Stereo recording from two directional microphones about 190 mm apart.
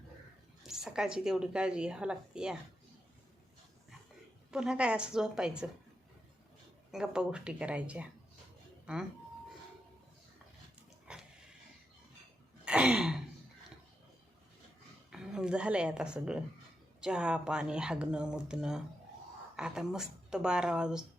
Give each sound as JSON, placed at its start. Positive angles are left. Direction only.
{"t": 0.7, "sound": "a woman's voice", "side_deg": -5}
{"t": 4.5, "sound": "a woman's voice", "side_deg": -5}
{"t": 6.9, "sound": "a woman's voice", "side_deg": -5}
{"t": 11.1, "sound": "a sound", "side_deg": -5}
{"t": 12.6, "sound": "throat clearing", "side_deg": -5}
{"t": 15.1, "sound": "a woman's voice", "side_deg": -5}